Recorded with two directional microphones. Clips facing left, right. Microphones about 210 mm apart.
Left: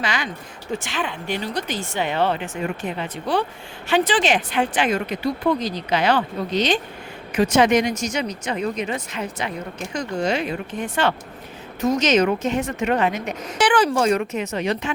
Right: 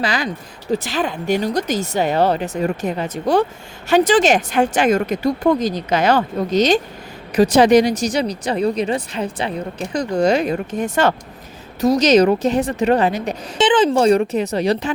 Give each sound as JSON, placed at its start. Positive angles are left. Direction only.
{"t": 0.0, "sound": "speech", "side_deg": -35}
{"t": 13.6, "sound": "speech", "side_deg": -20}